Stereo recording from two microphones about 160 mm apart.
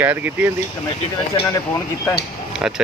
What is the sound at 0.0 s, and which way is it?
Speech, 10° right (ahead or behind).